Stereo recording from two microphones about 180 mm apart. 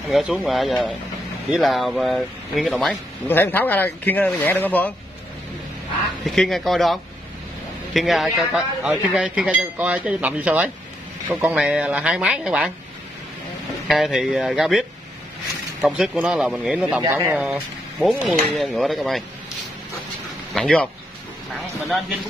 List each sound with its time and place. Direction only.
0.1 s speech: centre (ahead or behind)
6.2 s speech: centre (ahead or behind)
13.8 s speech: centre (ahead or behind)
20.5 s speech: 5° left (ahead or behind)